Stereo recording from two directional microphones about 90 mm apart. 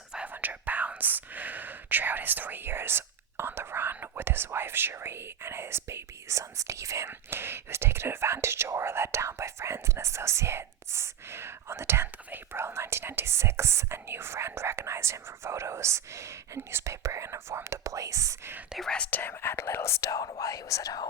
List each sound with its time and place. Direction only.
0.1 s speech: 15° right (ahead or behind); by 18.5 s 35° right (ahead or behind)
18.9 s speech: 10° left (ahead or behind)
19.2 s speech: 25° left (ahead or behind); by 21.1 s 45° left (ahead or behind)